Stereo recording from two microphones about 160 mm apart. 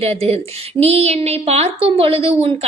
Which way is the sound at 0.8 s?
40° right (ahead or behind).